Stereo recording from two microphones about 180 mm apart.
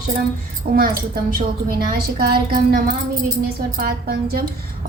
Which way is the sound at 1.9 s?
55° right (ahead or behind).